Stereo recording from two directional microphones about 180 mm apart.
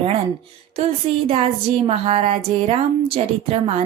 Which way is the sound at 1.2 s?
30° right (ahead or behind).